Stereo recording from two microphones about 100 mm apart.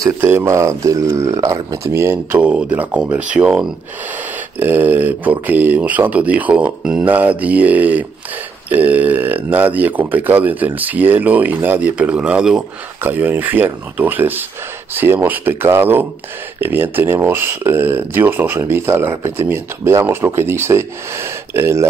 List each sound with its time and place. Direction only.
0.2 s speech: 25° right (ahead or behind)
2.4 s a man's voice: 15° right (ahead or behind)
13.0 s speech: 20° right (ahead or behind)